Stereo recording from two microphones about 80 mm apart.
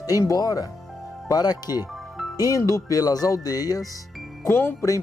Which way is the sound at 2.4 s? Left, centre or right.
Left.